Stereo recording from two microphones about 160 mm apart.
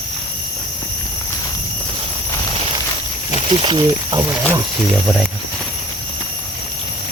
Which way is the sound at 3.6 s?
30° right (ahead or behind).